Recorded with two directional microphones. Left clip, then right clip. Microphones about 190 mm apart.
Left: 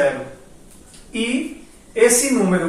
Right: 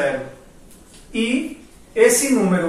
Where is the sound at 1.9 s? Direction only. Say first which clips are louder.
Even; centre (ahead or behind).